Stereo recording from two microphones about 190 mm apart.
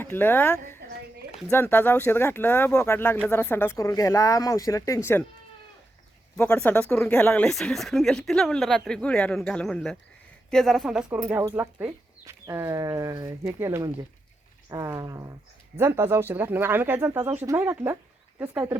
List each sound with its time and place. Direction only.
0.0 s speech: 10° left (ahead or behind)
6.3 s speech: 10° left (ahead or behind); by 18.8 s 10° right (ahead or behind)